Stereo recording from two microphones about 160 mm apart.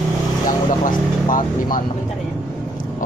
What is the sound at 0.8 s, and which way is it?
Speech, 55° left (ahead or behind).